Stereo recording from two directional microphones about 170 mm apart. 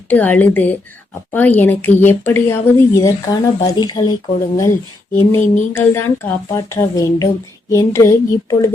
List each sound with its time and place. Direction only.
0.1 s speech: 10° left (ahead or behind)
5.7 s speech: 15° left (ahead or behind)